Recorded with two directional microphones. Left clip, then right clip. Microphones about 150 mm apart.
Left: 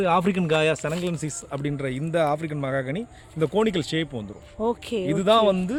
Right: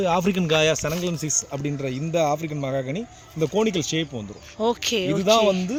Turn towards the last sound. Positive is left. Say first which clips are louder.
# even
turn(degrees=0)  # may be behind; listen again after turning